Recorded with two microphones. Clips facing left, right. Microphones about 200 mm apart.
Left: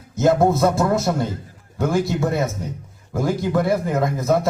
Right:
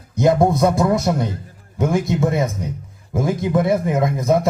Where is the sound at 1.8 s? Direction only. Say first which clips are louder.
Right 1 dB; 20° right (ahead or behind).